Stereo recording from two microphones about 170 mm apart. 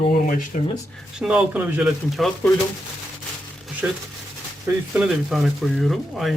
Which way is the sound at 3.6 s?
Centre (ahead or behind).